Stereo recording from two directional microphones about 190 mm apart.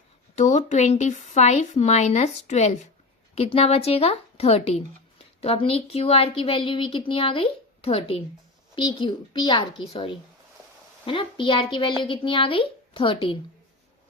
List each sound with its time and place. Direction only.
0.3 s speech: 40° left (ahead or behind)